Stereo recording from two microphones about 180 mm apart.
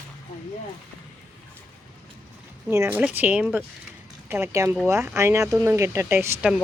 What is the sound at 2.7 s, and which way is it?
Speech, 10° right (ahead or behind).